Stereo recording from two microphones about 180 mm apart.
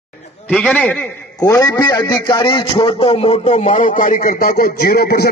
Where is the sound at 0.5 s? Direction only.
5° left (ahead or behind).